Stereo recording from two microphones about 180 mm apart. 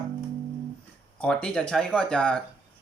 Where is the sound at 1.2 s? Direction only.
5° left (ahead or behind).